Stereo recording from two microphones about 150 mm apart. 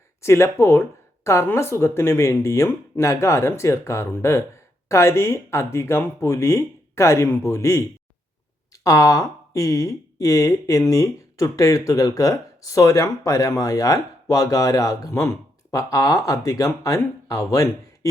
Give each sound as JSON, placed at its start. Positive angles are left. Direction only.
{"t": 0.2, "sound": "speech", "side_deg": 20}